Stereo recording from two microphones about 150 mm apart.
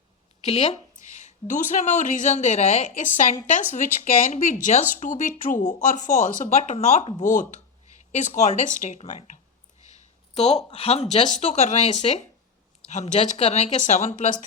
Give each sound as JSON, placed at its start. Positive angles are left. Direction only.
{"t": 0.4, "sound": "a woman's voice", "side_deg": 45}
{"t": 8.6, "sound": "speech", "side_deg": 55}
{"t": 10.3, "sound": "a woman's voice", "side_deg": 45}